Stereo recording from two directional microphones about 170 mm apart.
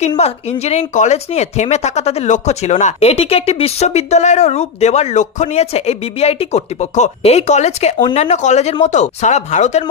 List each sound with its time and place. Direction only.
0.2 s speech: 40° left (ahead or behind)